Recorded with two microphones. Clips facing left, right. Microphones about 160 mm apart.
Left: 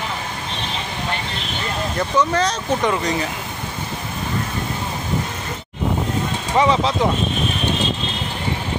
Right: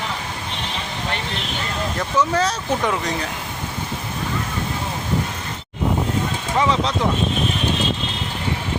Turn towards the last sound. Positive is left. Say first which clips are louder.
# left 3 dB
turn(degrees=0)  # may be behind; listen again after turning